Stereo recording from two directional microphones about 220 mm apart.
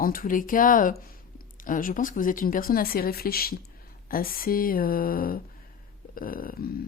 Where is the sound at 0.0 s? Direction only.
40° left (ahead or behind).